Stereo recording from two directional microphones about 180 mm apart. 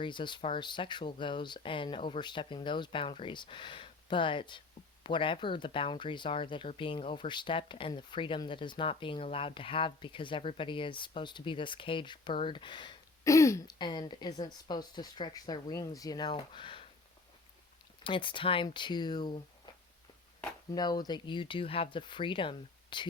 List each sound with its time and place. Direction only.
0.0 s speech: 25° left (ahead or behind)
18.0 s speech: 30° left (ahead or behind)
20.7 s speech: 20° left (ahead or behind)